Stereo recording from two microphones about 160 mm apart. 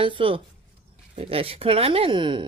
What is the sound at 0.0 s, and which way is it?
Speech, 35° right (ahead or behind).